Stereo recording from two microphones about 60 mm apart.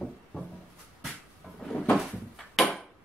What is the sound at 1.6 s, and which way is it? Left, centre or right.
Cupboard open or close, centre.